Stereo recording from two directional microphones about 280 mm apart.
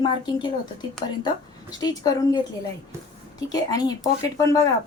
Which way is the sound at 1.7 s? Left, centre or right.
Centre.